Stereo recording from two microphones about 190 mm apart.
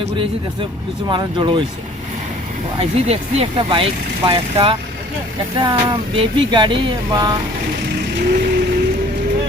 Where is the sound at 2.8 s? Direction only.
35° right (ahead or behind).